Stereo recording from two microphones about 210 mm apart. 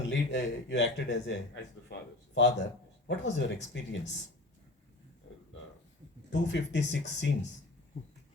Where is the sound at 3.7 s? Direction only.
60° left (ahead or behind).